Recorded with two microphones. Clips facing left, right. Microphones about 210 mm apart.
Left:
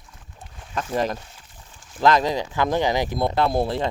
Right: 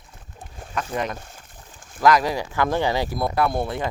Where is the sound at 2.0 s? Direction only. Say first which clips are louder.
Even; 25° left (ahead or behind).